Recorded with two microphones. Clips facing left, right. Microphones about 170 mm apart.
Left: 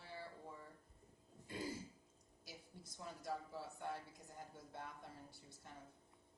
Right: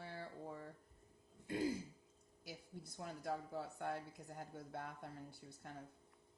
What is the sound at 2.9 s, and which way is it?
A woman's voice, 60° right (ahead or behind).